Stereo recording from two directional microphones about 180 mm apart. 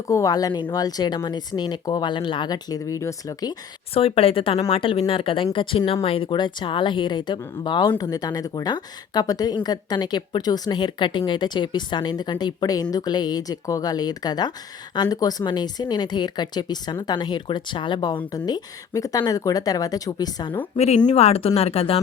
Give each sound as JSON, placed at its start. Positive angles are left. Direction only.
{"t": 0.1, "sound": "speech", "side_deg": 20}
{"t": 3.9, "sound": "speech", "side_deg": 30}
{"t": 20.7, "sound": "speech", "side_deg": 35}